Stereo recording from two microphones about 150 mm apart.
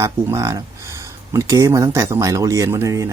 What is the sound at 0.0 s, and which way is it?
Speech, 20° right (ahead or behind).